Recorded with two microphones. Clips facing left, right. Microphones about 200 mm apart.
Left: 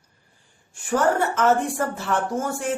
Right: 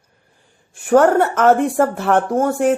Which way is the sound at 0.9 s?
60° right (ahead or behind).